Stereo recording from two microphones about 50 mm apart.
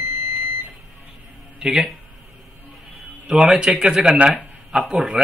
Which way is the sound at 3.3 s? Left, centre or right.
Centre.